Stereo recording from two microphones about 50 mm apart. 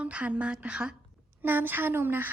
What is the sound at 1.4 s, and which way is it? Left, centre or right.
Speech, right.